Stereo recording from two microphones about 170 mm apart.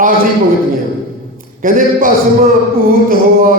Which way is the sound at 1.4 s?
55° right (ahead or behind).